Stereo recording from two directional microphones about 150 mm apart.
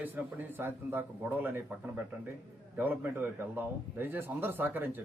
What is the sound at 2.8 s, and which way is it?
A man's voice, 10° right (ahead or behind).